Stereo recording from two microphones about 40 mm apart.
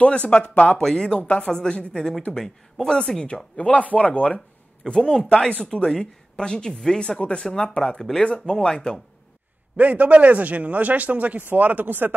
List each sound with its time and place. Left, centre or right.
0.0 s speech: left
0.7 s speech: centre
1.1 s speech: left
3.3 s speech: left
4.8 s speech: left
7.7 s speech: centre
9.8 s a man's voice: right